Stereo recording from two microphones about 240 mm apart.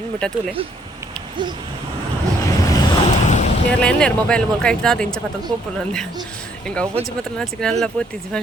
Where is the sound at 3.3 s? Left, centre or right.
Left.